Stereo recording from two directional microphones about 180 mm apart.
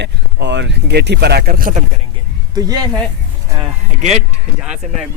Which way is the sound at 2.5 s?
20° right (ahead or behind).